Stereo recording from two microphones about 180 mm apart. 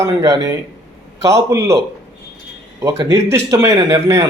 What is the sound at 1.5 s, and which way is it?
Speech, 15° right (ahead or behind).